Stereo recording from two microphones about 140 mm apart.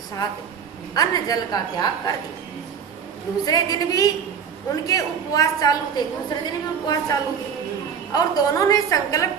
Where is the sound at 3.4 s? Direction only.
25° left (ahead or behind).